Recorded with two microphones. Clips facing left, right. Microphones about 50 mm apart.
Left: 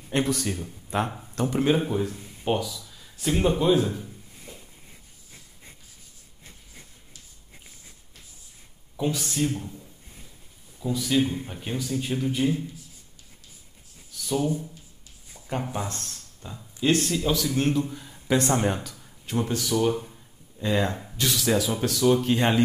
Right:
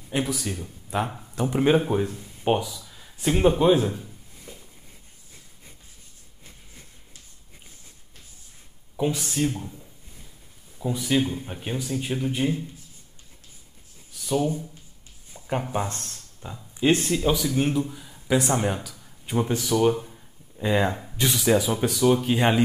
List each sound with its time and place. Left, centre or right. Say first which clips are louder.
0.1 s a man's voice: left 2 dB; centre
1.3 s speech: right 3 dB; centre
9.2 s speech: right 1 dB; centre
10.8 s speech: even; right
14.2 s speech: right 1 dB; right
15.3 s a sound: right 3 dB; right
15.7 s speech: right 4 dB; right; by 17.8 s centre
17.8 s speech: even; centre
19.2 s speech: right 2 dB; centre
20.1 s a sound: right 1 dB; centre
21.2 s speech: right 3 dB; centre